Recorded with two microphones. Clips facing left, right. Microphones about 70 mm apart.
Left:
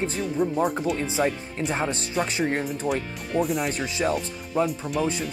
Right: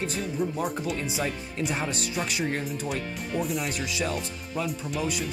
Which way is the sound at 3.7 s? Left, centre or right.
Left.